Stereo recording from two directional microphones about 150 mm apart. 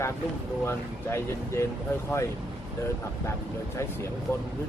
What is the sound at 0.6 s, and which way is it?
Speech, 15° left (ahead or behind).